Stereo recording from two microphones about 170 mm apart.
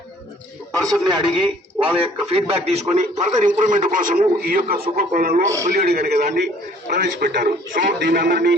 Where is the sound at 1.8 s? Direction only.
35° right (ahead or behind); by 6.1 s 70° right (ahead or behind).